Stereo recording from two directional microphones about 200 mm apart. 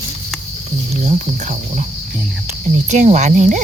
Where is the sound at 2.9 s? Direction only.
35° right (ahead or behind).